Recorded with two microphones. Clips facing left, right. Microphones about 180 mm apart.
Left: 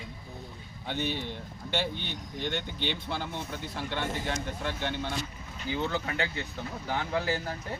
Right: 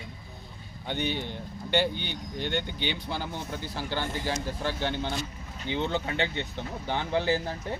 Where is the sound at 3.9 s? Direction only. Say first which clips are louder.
Right 2 dB; 30° right (ahead or behind).